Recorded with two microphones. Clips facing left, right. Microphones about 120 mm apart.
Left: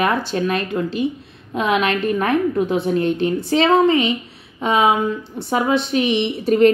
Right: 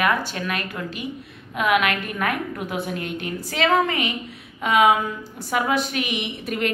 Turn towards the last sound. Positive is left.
turn(degrees=30)  # may be behind; listen again after turning